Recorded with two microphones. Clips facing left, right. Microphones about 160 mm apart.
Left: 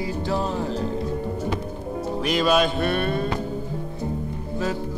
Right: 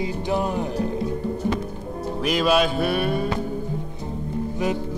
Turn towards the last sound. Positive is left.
turn(degrees=-10)  # may be behind; listen again after turning